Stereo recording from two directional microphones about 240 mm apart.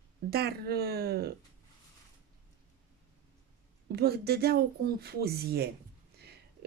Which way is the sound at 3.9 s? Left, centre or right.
Right.